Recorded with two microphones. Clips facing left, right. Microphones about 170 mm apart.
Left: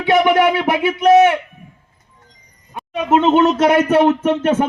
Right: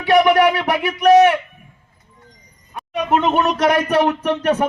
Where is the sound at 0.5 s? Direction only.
25° left (ahead or behind).